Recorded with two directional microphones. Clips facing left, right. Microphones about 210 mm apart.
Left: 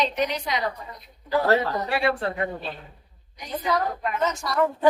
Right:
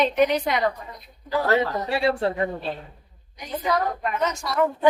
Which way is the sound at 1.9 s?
25° right (ahead or behind).